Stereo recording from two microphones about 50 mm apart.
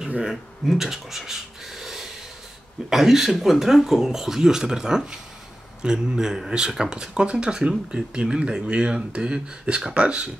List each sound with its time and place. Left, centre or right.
0.3 s speech: centre; by 10.3 s right